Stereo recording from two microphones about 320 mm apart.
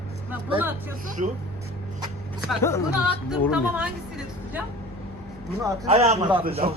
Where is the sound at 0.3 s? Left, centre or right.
Centre.